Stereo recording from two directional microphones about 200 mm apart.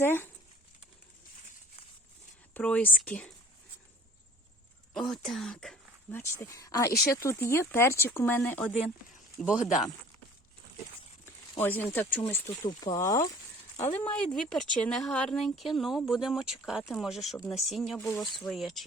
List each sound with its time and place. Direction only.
0.0 s speech: 10° left (ahead or behind)
2.6 s speech: 5° left (ahead or behind)
4.9 s speech: centre (ahead or behind)
11.6 s speech: 10° left (ahead or behind)